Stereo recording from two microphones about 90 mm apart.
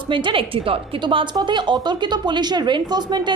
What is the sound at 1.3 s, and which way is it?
Speech, 60° right (ahead or behind).